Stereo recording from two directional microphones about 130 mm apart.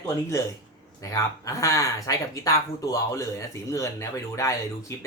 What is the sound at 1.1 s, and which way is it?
Speech, 25° left (ahead or behind).